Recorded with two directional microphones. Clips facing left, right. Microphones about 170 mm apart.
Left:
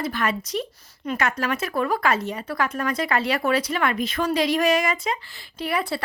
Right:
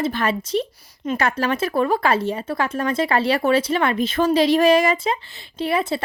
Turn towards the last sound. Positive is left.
turn(degrees=-25)  # may be behind; listen again after turning